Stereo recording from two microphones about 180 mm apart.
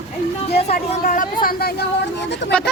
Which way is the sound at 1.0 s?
50° left (ahead or behind).